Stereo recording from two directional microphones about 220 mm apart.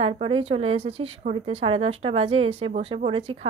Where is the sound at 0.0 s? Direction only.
25° right (ahead or behind).